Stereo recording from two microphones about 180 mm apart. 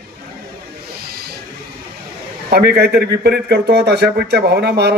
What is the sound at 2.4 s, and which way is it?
Speech, 65° right (ahead or behind).